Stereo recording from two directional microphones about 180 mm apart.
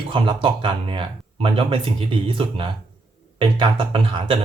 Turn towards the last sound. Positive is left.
turn(degrees=-30)  # may be behind; listen again after turning